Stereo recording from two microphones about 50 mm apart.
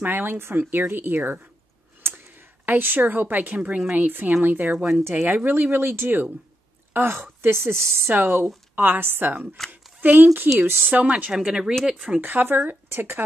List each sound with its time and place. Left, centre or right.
0.0 s speech: right
4.7 s speech: centre
5.2 s speech: right
8.1 s speech: right
11.3 s speech: centre
12.2 s speech: right
12.9 s speech: right